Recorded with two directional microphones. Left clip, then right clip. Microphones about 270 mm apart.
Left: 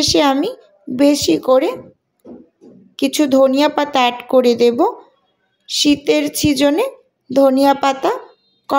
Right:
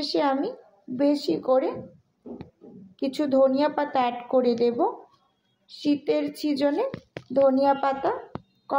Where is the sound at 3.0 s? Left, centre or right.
Left.